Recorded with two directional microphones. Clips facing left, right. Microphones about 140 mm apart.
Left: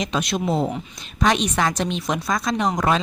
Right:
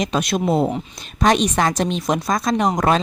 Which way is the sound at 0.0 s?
45° right (ahead or behind).